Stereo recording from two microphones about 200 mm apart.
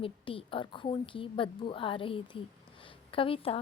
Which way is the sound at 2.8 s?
25° left (ahead or behind).